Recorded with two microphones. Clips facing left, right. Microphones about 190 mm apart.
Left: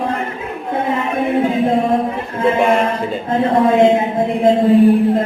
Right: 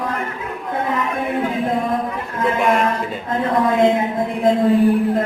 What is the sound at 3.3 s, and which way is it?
A man's voice, 25° left (ahead or behind).